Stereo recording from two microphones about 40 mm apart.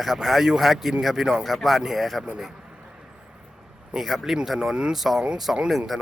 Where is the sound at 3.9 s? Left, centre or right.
Centre.